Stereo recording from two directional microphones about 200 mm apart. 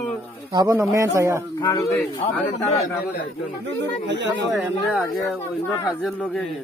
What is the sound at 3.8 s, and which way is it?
Speech, 60° right (ahead or behind).